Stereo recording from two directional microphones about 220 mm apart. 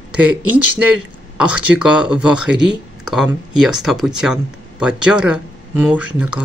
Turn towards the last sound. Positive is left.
turn(degrees=-5)  # may be behind; listen again after turning